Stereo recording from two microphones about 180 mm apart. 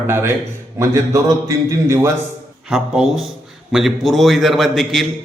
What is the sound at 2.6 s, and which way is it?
A man's voice, 5° right (ahead or behind).